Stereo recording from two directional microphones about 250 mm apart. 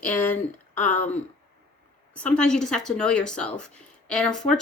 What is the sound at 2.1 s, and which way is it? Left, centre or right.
A woman's voice, centre.